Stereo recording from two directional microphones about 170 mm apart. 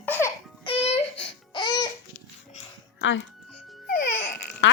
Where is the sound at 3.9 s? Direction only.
65° left (ahead or behind).